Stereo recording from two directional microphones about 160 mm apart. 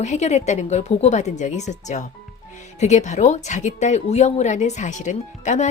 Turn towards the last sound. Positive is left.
turn(degrees=50)  # may be behind; listen again after turning